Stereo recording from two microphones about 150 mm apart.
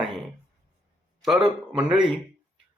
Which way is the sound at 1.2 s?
5° right (ahead or behind).